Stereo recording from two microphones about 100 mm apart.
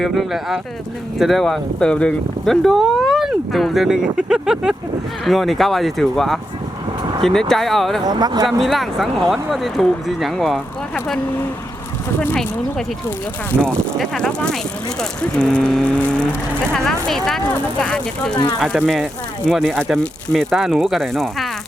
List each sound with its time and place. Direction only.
0.0 s speech: centre (ahead or behind)
8.0 s speech: 45° right (ahead or behind)
8.4 s speech: centre (ahead or behind)
13.6 s speech: 10° left (ahead or behind)
19.5 s speech: 5° left (ahead or behind)